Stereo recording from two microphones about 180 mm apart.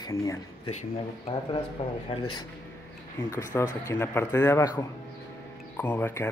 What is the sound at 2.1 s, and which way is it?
Speech, 25° left (ahead or behind).